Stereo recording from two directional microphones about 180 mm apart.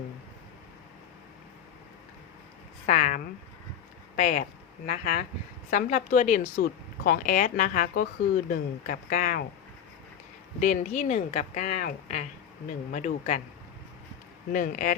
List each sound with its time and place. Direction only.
2.8 s speech: 40° left (ahead or behind)
4.2 s speech: 45° left (ahead or behind)
5.7 s speech: 45° left (ahead or behind)
10.6 s speech: 45° left (ahead or behind)
14.5 s speech: 50° left (ahead or behind)